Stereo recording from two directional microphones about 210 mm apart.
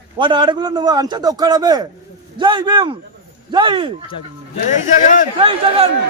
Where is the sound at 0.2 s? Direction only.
20° right (ahead or behind).